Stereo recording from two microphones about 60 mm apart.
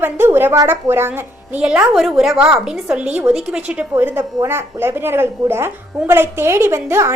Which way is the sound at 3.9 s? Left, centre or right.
Right.